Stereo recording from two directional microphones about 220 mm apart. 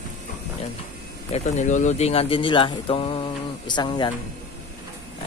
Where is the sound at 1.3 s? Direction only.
35° left (ahead or behind).